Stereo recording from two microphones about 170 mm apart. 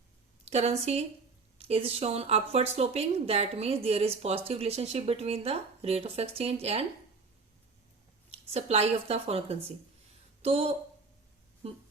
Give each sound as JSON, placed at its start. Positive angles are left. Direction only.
{"t": 0.4, "sound": "a woman's voice", "side_deg": -40}
{"t": 8.3, "sound": "speech", "side_deg": -40}